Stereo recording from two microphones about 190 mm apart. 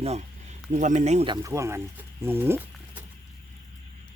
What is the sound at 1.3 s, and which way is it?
Speech, 15° right (ahead or behind).